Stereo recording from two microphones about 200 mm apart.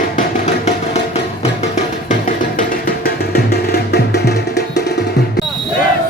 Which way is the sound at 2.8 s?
50° left (ahead or behind).